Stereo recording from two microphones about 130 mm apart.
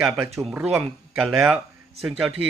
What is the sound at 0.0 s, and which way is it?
Speech, 5° right (ahead or behind).